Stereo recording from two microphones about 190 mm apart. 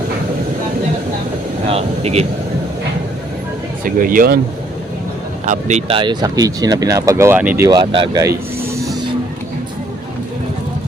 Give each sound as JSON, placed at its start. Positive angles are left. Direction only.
{"t": 1.6, "sound": "speech", "side_deg": -35}
{"t": 3.8, "sound": "speech", "side_deg": -45}
{"t": 5.5, "sound": "speech", "side_deg": -40}
{"t": 6.0, "sound": "speech", "side_deg": -25}